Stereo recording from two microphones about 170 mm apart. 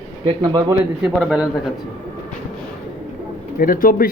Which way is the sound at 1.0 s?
5° right (ahead or behind).